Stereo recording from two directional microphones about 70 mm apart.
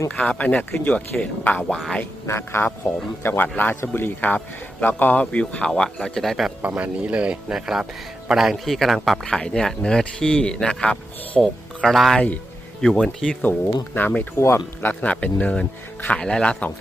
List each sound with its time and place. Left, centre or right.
0.2 s a man's voice: centre
1.6 s a man's voice: centre
2.2 s a man's voice: left; by 6.5 s centre
6.6 s speech: right
7.5 s a man's voice: centre
12.1 s a man's voice: centre
12.8 s a man's voice: centre
14.0 s speech: left
14.8 s a man's voice: left